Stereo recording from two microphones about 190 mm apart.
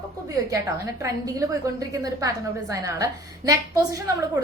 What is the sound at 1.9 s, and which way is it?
A woman's voice, 15° right (ahead or behind).